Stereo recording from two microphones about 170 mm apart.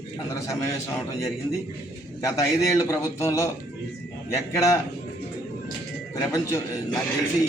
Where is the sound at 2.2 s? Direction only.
20° left (ahead or behind).